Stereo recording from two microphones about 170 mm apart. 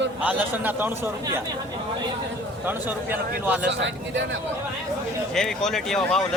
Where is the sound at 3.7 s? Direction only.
90° right.